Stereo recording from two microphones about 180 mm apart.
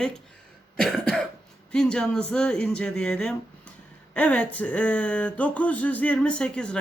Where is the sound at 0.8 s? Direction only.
Centre (ahead or behind).